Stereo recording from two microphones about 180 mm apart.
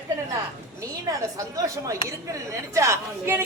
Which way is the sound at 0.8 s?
20° right (ahead or behind).